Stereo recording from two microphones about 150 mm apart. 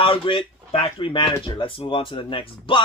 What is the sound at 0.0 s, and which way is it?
Speech, 35° left (ahead or behind).